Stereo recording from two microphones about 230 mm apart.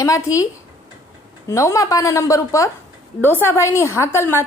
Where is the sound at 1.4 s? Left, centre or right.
Centre.